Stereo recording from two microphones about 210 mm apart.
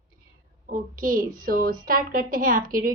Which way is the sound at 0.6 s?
40° right (ahead or behind).